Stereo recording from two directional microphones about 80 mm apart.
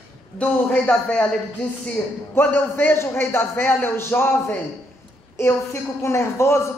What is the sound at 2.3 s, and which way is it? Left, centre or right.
A man's voice, left.